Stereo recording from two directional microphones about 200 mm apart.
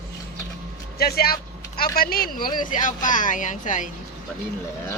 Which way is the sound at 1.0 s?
50° left (ahead or behind).